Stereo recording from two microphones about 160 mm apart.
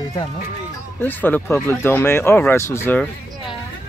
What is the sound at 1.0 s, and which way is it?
Speech, 10° left (ahead or behind).